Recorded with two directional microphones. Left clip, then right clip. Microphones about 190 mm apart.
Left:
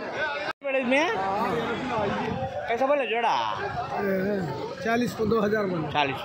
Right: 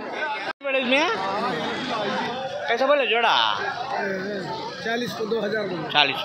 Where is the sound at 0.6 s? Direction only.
20° left (ahead or behind).